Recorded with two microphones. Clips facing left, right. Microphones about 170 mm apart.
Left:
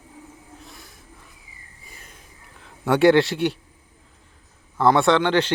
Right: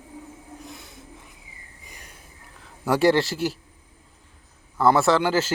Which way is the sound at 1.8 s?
15° right (ahead or behind).